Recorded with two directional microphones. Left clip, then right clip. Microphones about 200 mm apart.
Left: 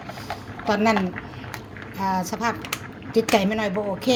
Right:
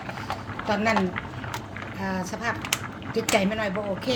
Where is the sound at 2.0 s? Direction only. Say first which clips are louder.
Left 7 dB; 45° left (ahead or behind).